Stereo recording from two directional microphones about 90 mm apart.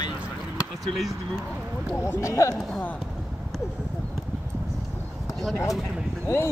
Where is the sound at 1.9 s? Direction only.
30° left (ahead or behind).